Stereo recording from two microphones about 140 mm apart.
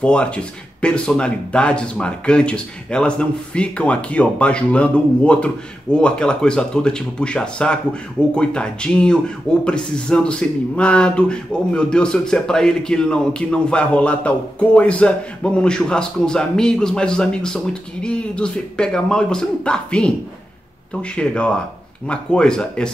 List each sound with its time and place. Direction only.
0.0 s a man's voice: 5° left (ahead or behind)